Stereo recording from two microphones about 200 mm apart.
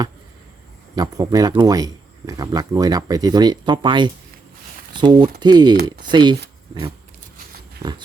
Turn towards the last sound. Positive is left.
turn(degrees=-15)  # may be behind; listen again after turning